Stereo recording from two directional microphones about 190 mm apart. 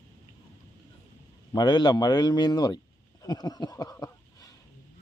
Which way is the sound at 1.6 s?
20° left (ahead or behind).